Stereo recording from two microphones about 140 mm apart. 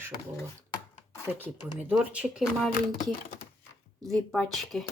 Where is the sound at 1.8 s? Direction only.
10° right (ahead or behind).